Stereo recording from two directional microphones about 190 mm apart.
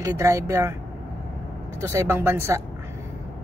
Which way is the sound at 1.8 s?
15° right (ahead or behind).